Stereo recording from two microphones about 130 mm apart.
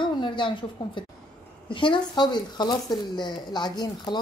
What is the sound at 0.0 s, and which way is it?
A woman's voice, 40° left (ahead or behind).